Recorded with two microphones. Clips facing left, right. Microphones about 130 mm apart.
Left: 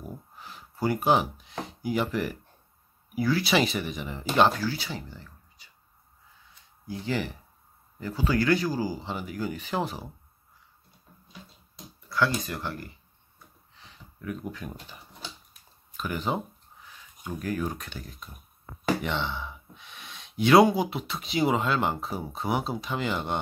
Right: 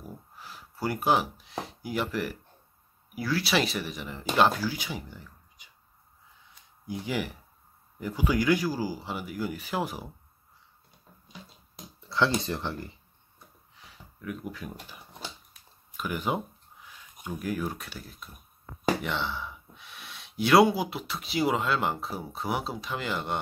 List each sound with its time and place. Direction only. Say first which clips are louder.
0.4 s a sound: left 3 dB; centre (ahead or behind)
1.7 s speech: left 4 dB; centre (ahead or behind)
4.6 s speech: left 1 dB; 15° right (ahead or behind)
6.9 s speech: left 1 dB; 10° right (ahead or behind)
12.4 s speech: right 2 dB; 25° right (ahead or behind)
13.7 s speech: left 1 dB; 5° right (ahead or behind)
16.0 s speech: even; 10° right (ahead or behind)
19.0 s gasp: left 1 dB; centre (ahead or behind)
20.7 s speech: left 3 dB; 5° right (ahead or behind)